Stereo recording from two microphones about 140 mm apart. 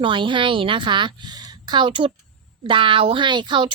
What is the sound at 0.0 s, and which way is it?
Speech, 35° right (ahead or behind).